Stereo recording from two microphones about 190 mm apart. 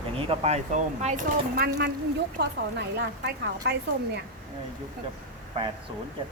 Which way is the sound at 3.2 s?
60° right (ahead or behind).